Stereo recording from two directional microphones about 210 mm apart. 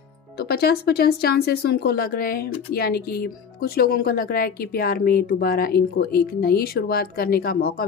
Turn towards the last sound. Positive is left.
turn(degrees=45)  # may be behind; listen again after turning